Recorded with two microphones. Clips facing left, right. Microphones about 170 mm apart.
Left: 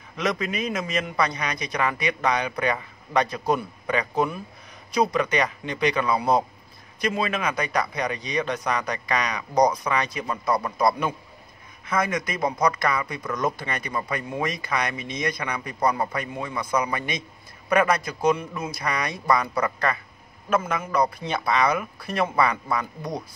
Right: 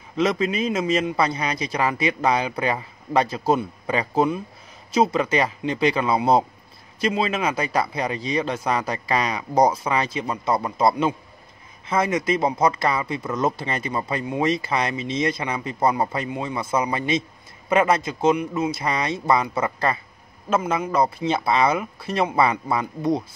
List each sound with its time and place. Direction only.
0.2 s speech: 30° right (ahead or behind)